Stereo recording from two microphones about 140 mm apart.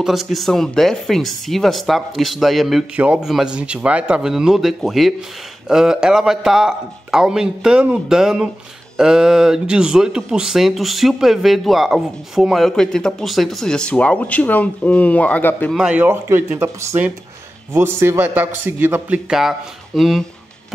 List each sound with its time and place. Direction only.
0.0 s speech: centre (ahead or behind)
15.7 s a man's voice: 5° right (ahead or behind)